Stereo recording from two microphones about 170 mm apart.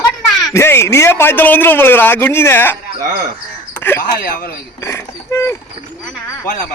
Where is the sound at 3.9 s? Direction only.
15° left (ahead or behind).